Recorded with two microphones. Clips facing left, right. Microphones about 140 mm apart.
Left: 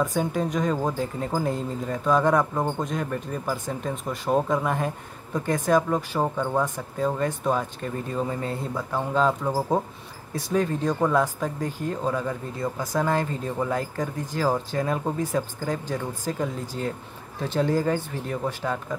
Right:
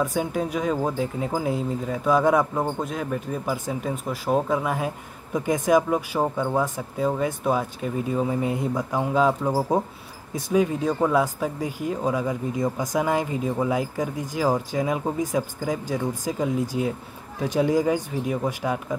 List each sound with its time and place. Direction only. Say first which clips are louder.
0.0 s speech: even; 5° right (ahead or behind)